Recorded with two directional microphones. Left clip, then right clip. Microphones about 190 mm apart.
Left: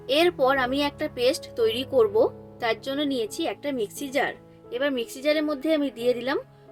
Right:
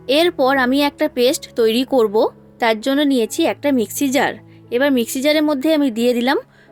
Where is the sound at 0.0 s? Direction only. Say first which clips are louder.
Right 6 dB; 50° right (ahead or behind).